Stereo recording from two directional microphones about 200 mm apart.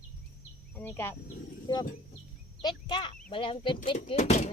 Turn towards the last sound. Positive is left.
turn(degrees=35)  # may be behind; listen again after turning